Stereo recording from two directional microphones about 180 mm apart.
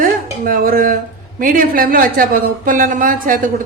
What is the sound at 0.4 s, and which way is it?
A woman's voice, 55° right (ahead or behind).